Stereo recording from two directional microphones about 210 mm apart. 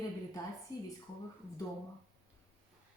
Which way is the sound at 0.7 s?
20° left (ahead or behind).